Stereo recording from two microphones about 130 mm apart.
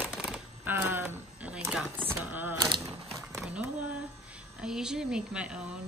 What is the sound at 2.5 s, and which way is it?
Speech, 30° right (ahead or behind).